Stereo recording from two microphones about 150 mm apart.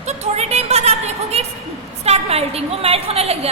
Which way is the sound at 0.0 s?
50° right (ahead or behind).